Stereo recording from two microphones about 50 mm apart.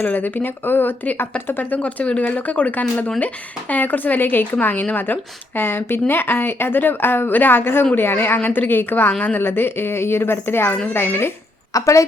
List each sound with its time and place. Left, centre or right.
0.0 s a woman's voice: left
1.8 s a woman's voice: left
11.7 s a woman's voice: left